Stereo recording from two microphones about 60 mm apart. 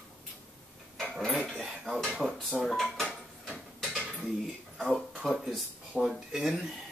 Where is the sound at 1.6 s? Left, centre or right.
Centre.